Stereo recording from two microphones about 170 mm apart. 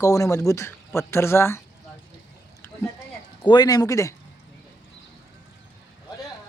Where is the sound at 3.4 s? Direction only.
25° left (ahead or behind).